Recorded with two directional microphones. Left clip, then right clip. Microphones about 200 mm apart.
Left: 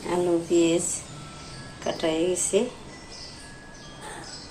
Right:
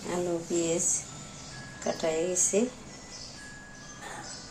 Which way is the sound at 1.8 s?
Centre (ahead or behind).